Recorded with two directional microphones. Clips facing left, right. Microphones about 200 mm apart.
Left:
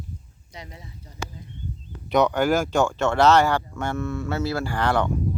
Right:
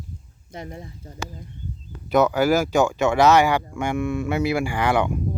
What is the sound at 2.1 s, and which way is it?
Speech, 5° right (ahead or behind).